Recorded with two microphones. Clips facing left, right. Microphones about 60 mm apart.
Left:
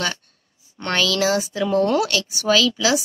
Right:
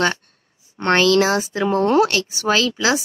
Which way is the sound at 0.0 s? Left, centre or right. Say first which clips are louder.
Right 6 dB; right.